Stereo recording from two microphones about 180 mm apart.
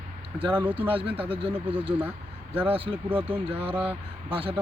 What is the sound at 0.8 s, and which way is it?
Speech, 30° right (ahead or behind).